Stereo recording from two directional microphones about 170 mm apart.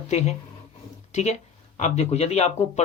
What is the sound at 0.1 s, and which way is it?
Speech, 40° left (ahead or behind).